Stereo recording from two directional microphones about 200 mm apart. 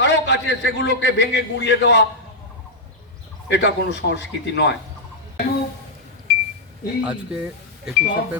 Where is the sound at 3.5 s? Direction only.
60° left (ahead or behind).